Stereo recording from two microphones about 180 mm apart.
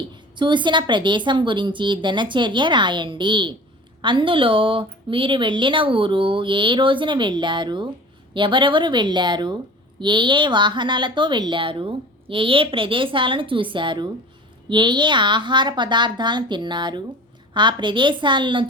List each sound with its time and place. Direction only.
0.3 s a woman's voice: 25° right (ahead or behind)